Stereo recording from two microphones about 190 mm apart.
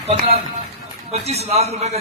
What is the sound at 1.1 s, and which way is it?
Speech, 35° right (ahead or behind).